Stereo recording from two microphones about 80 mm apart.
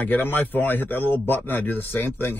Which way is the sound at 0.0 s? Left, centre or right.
Left.